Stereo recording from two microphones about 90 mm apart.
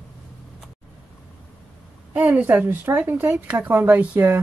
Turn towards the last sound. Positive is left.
turn(degrees=-20)  # may be behind; listen again after turning